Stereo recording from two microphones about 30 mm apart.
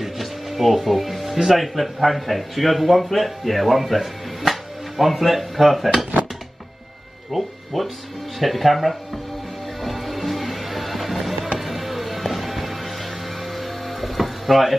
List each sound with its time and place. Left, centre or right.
0.0 s music: centre
1.8 s speech: centre
7.3 s speech: centre
9.8 s music: centre